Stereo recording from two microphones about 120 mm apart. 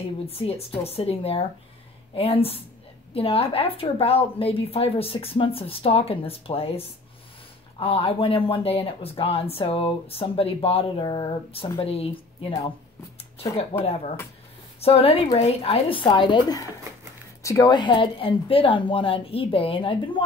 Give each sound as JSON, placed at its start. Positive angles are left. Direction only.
{"t": 0.3, "sound": "speech", "side_deg": 55}
{"t": 13.7, "sound": "speech", "side_deg": 55}